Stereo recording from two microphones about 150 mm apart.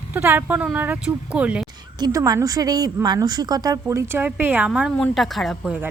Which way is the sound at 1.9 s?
25° right (ahead or behind).